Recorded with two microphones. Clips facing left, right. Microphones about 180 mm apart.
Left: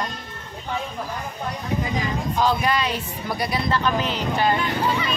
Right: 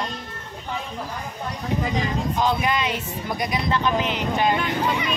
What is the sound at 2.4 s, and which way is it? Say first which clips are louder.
Speech: left 2 dB; 20° right (ahead or behind).